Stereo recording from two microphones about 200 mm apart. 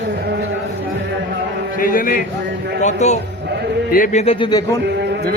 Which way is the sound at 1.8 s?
45° left (ahead or behind).